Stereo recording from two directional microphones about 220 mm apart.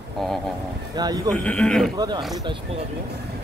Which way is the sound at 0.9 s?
15° right (ahead or behind).